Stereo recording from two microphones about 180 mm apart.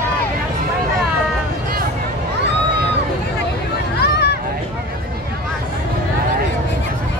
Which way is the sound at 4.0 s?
65° left (ahead or behind).